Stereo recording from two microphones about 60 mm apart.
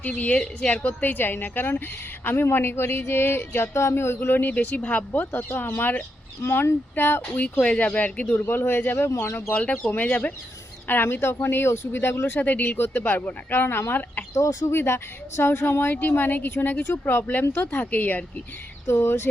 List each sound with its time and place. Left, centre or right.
0.0 s speech: left
0.9 s speech: left
7.6 s speech: centre
8.3 s speech: left
9.0 s speech: left
9.5 s speech: left
12.3 s speech: left
18.9 s speech: left